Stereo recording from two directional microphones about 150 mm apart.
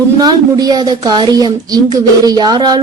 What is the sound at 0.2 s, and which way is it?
A woman's voice, 25° right (ahead or behind).